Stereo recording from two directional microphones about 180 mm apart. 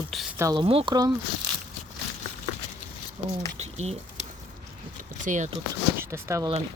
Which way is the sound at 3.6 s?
35° right (ahead or behind).